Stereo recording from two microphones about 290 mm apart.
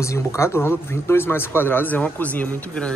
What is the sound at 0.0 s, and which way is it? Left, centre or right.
Speech, centre.